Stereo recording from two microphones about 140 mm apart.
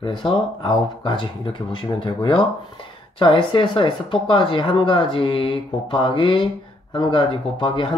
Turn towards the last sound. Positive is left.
turn(degrees=35)  # may be behind; listen again after turning